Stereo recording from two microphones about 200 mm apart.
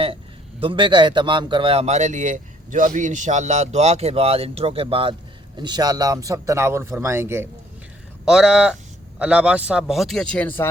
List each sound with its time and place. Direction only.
0.6 s a man's voice: 25° right (ahead or behind); by 10.7 s 5° left (ahead or behind)